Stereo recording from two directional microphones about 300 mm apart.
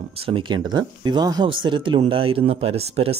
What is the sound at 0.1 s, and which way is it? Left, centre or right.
Speech, centre.